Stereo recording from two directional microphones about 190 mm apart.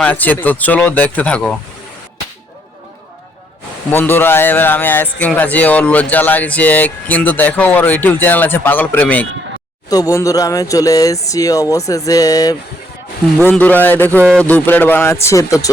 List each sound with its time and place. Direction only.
0.0 s speech: 10° left (ahead or behind)
3.9 s speech: 10° left (ahead or behind)
13.4 s speech: 10° left (ahead or behind)